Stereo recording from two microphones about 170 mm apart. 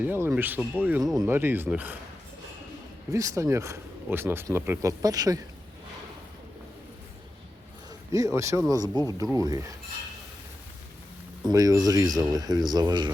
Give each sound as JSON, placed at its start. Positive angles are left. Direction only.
{"t": 0.0, "sound": "speech", "side_deg": -10}
{"t": 3.1, "sound": "speech", "side_deg": -20}
{"t": 8.1, "sound": "speech", "side_deg": -20}
{"t": 11.4, "sound": "speech", "side_deg": -20}